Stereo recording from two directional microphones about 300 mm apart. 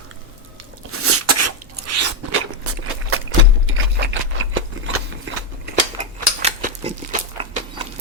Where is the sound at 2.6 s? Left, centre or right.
Right.